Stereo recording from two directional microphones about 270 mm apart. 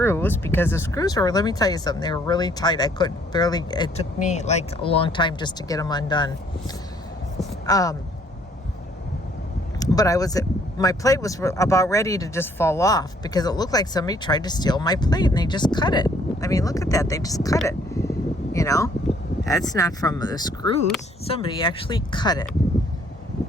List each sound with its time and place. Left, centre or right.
0.0 s speech: centre
7.7 s speech: centre
9.8 s speech: centre
17.7 s a sound: centre
18.5 s speech: centre